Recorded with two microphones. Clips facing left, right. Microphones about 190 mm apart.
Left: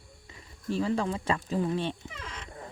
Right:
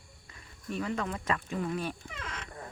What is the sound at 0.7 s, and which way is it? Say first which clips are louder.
Speech: left 5 dB; 30° left (ahead or behind).